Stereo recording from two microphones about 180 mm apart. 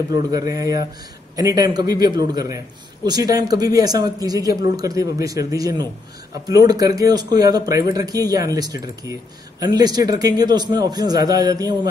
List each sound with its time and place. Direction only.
0.1 s speech: 20° right (ahead or behind)